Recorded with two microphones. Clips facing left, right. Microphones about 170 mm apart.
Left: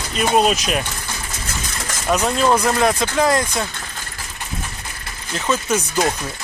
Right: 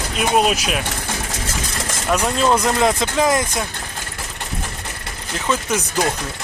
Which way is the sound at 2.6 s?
20° right (ahead or behind).